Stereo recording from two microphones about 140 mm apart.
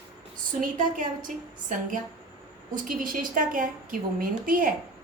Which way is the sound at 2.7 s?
75° right (ahead or behind).